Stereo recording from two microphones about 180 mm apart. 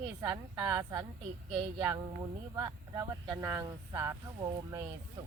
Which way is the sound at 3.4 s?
15° right (ahead or behind).